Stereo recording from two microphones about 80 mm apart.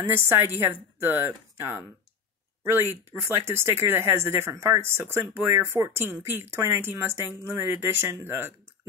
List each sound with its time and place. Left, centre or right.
0.0 s speech: right